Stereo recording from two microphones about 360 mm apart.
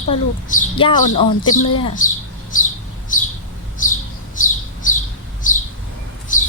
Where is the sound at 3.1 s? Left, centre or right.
Left.